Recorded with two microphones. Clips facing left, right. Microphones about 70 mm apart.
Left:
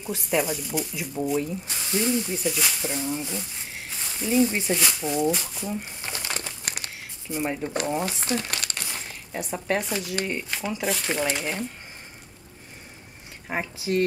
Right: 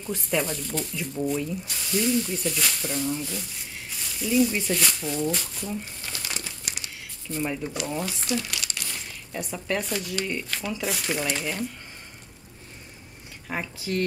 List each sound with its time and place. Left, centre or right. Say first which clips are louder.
0.0 s speech: left 2 dB; centre
1.4 s speech: left 1 dB; left
3.9 s speech: left 1 dB; left; by 5.7 s centre
5.7 s speech: left 3 dB; left
6.3 s crumpling: left 3 dB; left
7.2 s speech: left 1 dB; centre
8.0 s speech: left 1 dB; left
8.9 s zipper: left 1 dB; left
10.1 s speech: left 1 dB; left
13.5 s speech: left 3 dB; left